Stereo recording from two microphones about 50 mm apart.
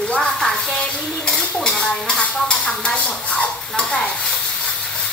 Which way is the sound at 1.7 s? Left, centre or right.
Centre.